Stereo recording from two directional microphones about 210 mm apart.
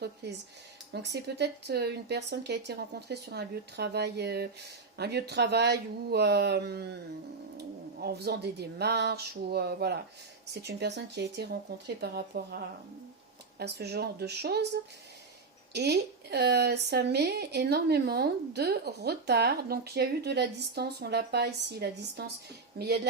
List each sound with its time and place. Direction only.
0.2 s speech: 55° right (ahead or behind)
8.0 s speech: 50° right (ahead or behind)
13.6 s speech: 50° right (ahead or behind)
15.7 s speech: 50° right (ahead or behind)